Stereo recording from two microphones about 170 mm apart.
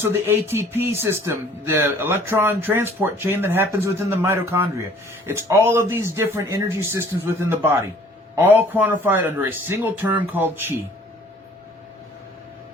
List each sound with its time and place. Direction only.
0.0 s speech: 15° right (ahead or behind)